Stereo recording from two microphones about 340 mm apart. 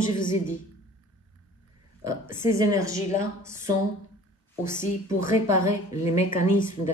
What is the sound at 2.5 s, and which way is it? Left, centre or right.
A woman's voice, centre.